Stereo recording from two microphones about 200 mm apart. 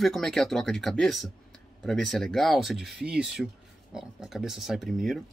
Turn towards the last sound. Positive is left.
turn(degrees=0)  # may be behind; listen again after turning